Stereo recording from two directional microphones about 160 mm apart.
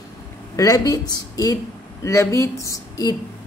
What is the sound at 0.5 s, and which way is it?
Speech, 20° left (ahead or behind).